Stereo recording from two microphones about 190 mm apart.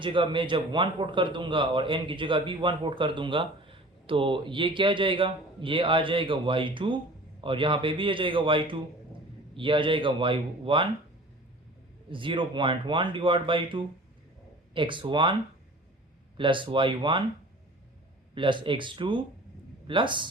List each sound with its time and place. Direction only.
0.0 s a man's voice: 25° right (ahead or behind)
12.1 s a man's voice: 25° right (ahead or behind)
16.4 s a man's voice: 25° right (ahead or behind)
18.3 s a man's voice: 25° right (ahead or behind)